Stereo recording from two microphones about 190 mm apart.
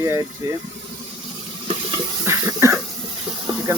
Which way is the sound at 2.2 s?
15° right (ahead or behind).